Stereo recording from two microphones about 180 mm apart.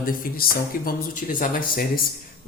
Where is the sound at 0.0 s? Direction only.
50° left (ahead or behind).